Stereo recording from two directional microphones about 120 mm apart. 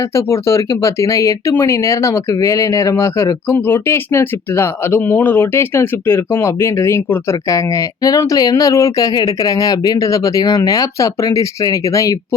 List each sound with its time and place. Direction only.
0.0 s speech: 20° left (ahead or behind)